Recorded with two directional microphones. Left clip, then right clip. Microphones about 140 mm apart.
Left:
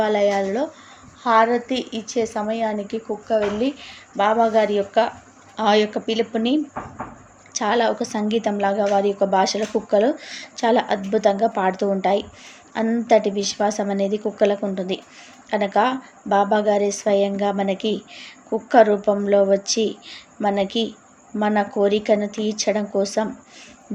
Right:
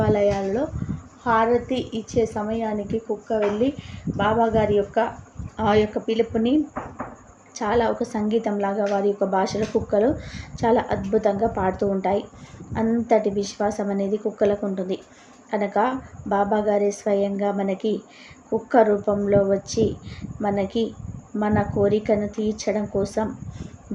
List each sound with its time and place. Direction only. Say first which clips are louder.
0.0 s a woman's voice: left 2 dB; 20° left (ahead or behind)